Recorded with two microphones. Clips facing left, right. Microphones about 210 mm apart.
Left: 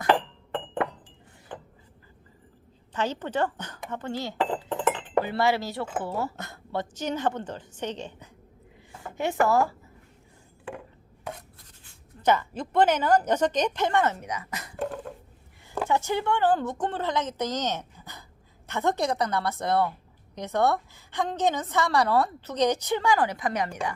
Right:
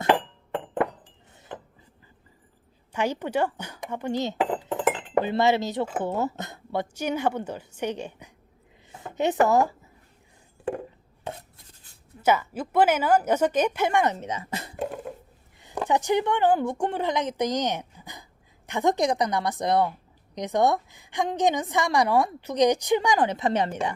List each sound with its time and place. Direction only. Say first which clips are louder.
2.9 s a woman's voice: right 3 dB; 10° right (ahead or behind)
8.9 s speech: right 4 dB; 20° right (ahead or behind)
11.2 s chopping: right 2 dB; 30° right (ahead or behind)
12.2 s a woman's voice: right 1 dB; 10° right (ahead or behind); by 14.8 s 25° right (ahead or behind)
14.8 s a sound: left 1 dB; 10° right (ahead or behind)
15.9 s a woman's voice: right 3 dB; 15° right (ahead or behind)